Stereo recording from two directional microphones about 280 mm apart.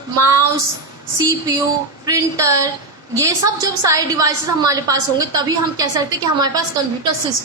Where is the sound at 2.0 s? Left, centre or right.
Centre.